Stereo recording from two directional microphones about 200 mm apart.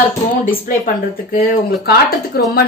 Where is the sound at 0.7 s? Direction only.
45° left (ahead or behind).